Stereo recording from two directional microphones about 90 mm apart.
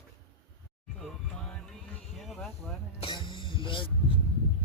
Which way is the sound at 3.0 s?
60° left (ahead or behind).